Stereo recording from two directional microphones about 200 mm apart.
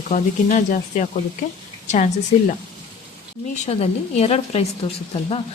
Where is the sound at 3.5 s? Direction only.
35° left (ahead or behind).